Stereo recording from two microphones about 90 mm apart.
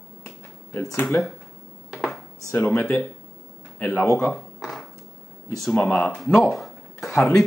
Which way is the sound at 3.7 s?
15° left (ahead or behind).